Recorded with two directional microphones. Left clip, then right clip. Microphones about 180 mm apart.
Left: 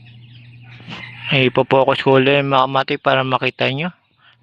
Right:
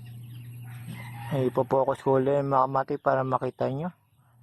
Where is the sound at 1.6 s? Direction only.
35° left (ahead or behind).